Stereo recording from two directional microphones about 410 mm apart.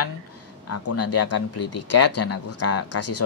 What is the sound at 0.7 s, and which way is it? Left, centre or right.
Speech, left.